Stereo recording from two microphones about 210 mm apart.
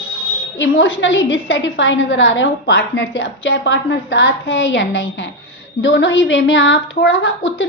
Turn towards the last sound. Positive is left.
turn(degrees=65)  # may be behind; listen again after turning